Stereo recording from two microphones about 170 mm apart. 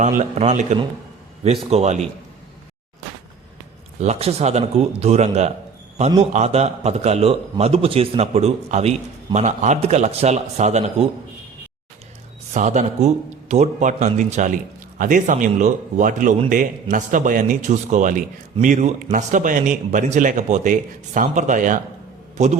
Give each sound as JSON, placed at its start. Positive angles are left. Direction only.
{"t": 0.0, "sound": "a man's voice", "side_deg": -45}
{"t": 4.0, "sound": "a man's voice", "side_deg": -40}
{"t": 12.5, "sound": "a man's voice", "side_deg": -45}